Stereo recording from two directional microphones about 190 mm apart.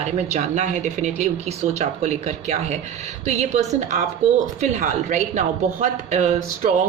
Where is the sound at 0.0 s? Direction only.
40° right (ahead or behind).